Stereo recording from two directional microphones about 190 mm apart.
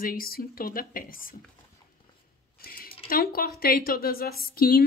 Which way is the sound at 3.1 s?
50° left (ahead or behind).